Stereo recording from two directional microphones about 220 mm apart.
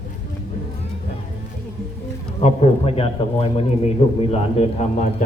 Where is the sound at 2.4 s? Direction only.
30° left (ahead or behind).